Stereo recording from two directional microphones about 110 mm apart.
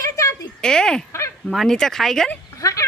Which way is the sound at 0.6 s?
5° left (ahead or behind).